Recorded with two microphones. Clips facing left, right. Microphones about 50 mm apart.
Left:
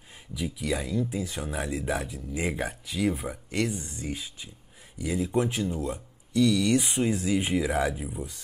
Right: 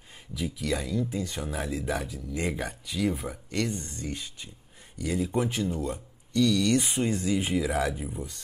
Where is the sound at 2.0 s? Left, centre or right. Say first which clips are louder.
Even; left.